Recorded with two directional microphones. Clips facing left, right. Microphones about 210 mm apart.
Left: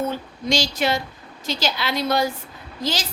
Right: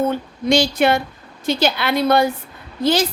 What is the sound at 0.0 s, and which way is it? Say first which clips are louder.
A woman's voice: right 6 dB; 55° right (ahead or behind).